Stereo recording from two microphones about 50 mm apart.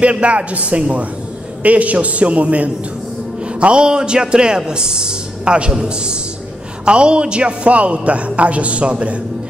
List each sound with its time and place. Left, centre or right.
0.0 s a man's voice: right